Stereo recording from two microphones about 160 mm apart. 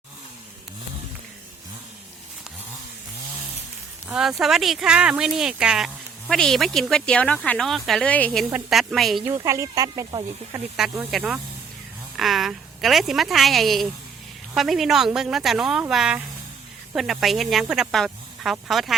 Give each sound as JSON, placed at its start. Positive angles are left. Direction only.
{"t": 4.1, "sound": "speech", "side_deg": -5}
{"t": 9.2, "sound": "speech", "side_deg": -20}
{"t": 11.1, "sound": "speech", "side_deg": -5}